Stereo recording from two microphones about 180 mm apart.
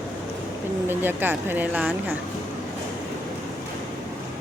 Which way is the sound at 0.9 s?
10° right (ahead or behind).